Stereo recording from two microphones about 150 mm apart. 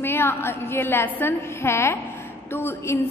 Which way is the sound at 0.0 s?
15° left (ahead or behind).